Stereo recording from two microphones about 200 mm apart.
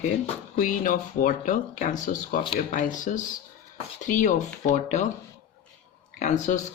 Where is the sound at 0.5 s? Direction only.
40° left (ahead or behind).